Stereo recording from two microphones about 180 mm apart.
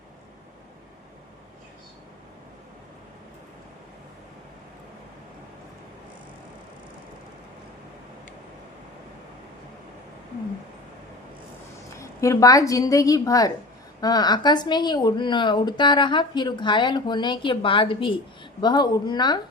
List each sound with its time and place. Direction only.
11.9 s a woman's voice: 15° left (ahead or behind)